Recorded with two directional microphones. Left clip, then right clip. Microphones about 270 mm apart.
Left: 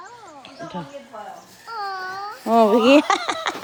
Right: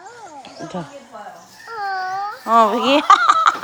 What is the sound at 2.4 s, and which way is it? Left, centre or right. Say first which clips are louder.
Speech: right 1 dB; centre.